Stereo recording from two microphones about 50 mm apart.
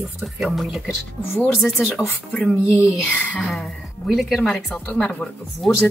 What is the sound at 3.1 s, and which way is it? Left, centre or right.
Speech, left.